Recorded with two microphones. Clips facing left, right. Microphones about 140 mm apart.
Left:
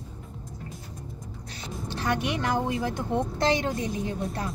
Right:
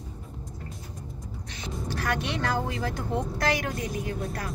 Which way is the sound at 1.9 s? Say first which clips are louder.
Left 2 dB; 20° left (ahead or behind).